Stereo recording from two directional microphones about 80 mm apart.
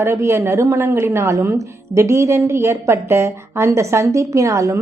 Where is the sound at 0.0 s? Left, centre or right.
Right.